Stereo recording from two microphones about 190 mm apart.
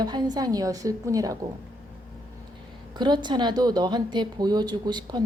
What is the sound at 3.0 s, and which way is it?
Speech, 25° right (ahead or behind).